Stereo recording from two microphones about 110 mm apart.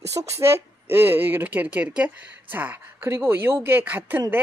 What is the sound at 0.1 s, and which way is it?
Speech, 25° right (ahead or behind).